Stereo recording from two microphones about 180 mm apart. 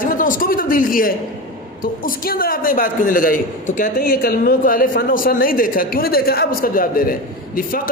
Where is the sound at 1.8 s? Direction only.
50° left (ahead or behind).